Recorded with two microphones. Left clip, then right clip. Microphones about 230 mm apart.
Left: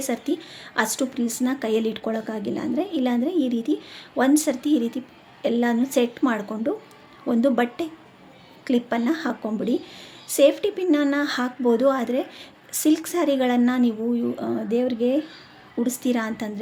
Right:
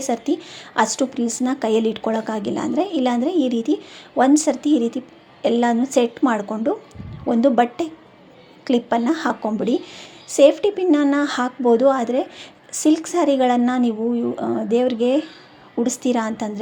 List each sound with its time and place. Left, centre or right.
0.0 s a woman's voice: centre